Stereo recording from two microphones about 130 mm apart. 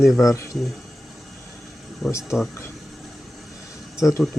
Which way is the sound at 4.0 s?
25° left (ahead or behind).